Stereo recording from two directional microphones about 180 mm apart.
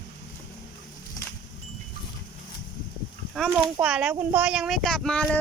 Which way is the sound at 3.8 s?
5° right (ahead or behind).